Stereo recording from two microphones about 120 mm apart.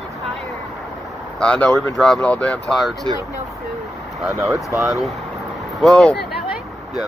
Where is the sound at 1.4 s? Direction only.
10° left (ahead or behind).